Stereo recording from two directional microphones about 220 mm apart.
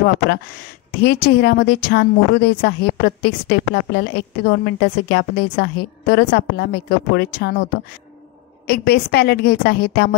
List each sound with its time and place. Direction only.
1.0 s speech: 45° left (ahead or behind)
8.6 s speech: 45° left (ahead or behind)